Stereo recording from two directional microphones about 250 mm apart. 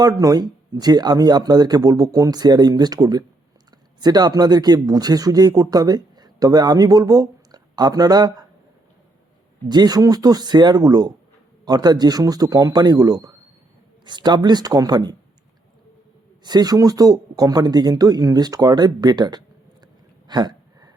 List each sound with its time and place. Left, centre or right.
0.0 s speech: centre
9.6 s speech: centre
16.4 s speech: centre
20.2 s a sound: centre